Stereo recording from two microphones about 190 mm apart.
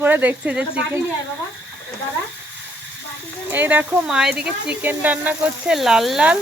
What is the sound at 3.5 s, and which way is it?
Speech, 10° right (ahead or behind).